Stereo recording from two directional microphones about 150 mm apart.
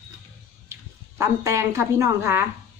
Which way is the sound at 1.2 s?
20° right (ahead or behind).